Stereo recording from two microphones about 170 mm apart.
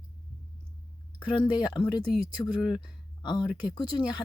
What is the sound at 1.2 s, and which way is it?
Speech, 25° left (ahead or behind).